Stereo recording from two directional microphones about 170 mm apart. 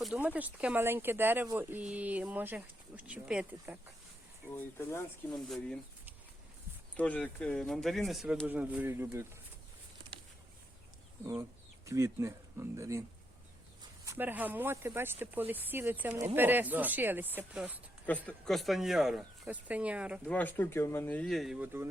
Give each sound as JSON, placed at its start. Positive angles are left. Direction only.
{"t": 0.0, "sound": "speech", "side_deg": -10}
{"t": 4.5, "sound": "speech", "side_deg": 15}
{"t": 5.3, "sound": "speech", "side_deg": 5}
{"t": 6.9, "sound": "speech", "side_deg": 10}
{"t": 11.9, "sound": "speech", "side_deg": -15}
{"t": 20.2, "sound": "speech", "side_deg": 10}